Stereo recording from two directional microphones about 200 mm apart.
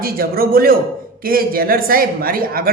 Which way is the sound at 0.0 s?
45° right (ahead or behind).